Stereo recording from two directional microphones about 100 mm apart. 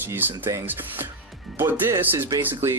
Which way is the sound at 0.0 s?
20° right (ahead or behind).